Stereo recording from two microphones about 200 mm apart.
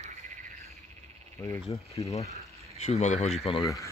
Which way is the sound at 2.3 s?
30° left (ahead or behind).